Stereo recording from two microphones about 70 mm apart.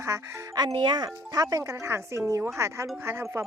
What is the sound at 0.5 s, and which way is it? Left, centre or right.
Speech, right.